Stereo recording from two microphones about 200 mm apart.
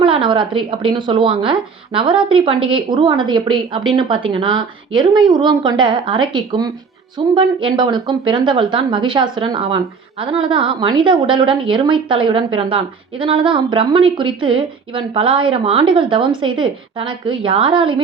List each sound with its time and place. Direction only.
0.0 s a woman's voice: 25° right (ahead or behind)